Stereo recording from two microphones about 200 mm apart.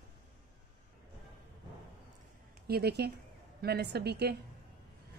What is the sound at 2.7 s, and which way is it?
A woman's voice, 55° right (ahead or behind).